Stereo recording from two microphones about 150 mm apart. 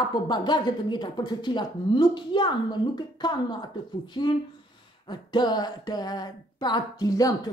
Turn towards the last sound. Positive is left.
turn(degrees=25)  # may be behind; listen again after turning